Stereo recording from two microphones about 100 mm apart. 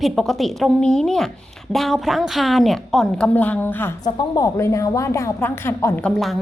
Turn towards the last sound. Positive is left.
turn(degrees=0)  # may be behind; listen again after turning